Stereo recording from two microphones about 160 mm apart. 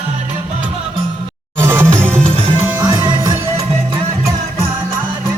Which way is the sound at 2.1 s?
35° right (ahead or behind).